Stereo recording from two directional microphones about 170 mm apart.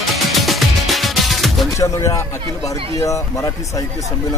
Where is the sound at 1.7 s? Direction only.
15° left (ahead or behind).